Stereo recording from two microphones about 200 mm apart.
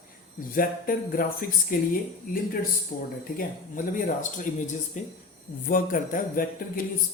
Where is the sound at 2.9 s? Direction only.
50° left (ahead or behind).